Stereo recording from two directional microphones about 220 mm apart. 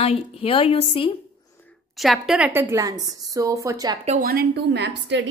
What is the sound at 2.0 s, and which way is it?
A woman's voice, centre (ahead or behind).